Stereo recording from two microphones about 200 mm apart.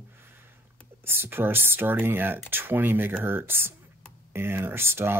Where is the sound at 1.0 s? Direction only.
10° right (ahead or behind).